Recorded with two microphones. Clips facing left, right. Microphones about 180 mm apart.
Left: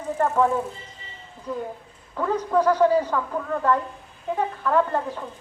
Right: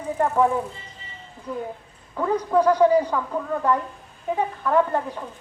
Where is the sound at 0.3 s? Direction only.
10° right (ahead or behind).